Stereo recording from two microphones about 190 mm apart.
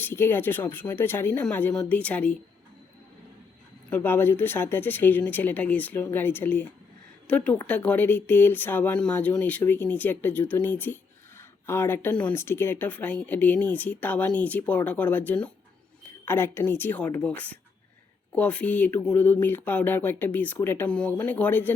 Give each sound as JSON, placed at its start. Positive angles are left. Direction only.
{"t": 0.0, "sound": "a woman's voice", "side_deg": 10}
{"t": 3.8, "sound": "a woman's voice", "side_deg": 10}